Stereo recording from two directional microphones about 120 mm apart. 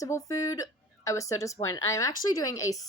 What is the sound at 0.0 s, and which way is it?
A woman's voice, 25° left (ahead or behind).